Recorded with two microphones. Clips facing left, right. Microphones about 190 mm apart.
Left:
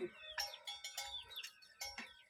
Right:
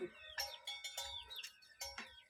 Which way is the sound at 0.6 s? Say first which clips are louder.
Right 1 dB; 55° right (ahead or behind).